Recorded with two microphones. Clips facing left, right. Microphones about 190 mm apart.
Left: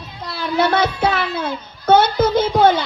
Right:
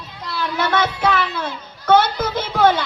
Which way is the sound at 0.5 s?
30° left (ahead or behind).